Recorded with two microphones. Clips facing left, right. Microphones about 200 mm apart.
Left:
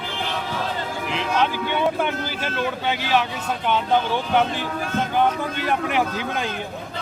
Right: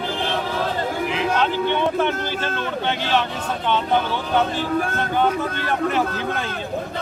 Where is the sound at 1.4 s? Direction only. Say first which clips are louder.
Left 1 dB; 10° left (ahead or behind).